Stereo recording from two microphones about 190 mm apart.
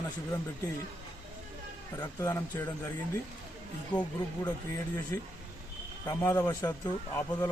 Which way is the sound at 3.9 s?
25° left (ahead or behind).